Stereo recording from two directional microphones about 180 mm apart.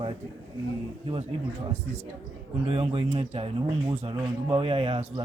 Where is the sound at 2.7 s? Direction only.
30° right (ahead or behind).